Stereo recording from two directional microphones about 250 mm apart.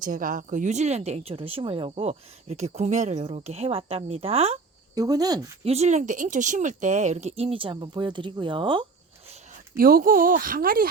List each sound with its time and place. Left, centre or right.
0.0 s speech: right
9.7 s speech: right